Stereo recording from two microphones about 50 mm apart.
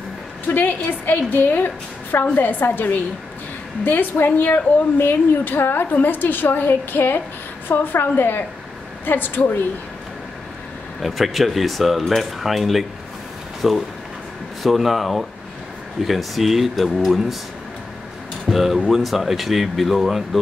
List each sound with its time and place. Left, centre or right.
0.5 s a woman's voice: left
11.0 s speech: centre
18.5 s speech: centre